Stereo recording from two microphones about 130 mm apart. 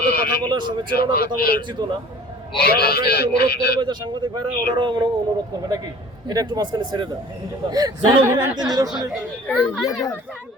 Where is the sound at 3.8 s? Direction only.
35° right (ahead or behind).